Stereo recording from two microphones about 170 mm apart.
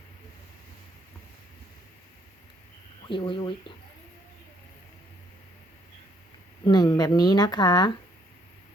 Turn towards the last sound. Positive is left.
turn(degrees=25)  # may be behind; listen again after turning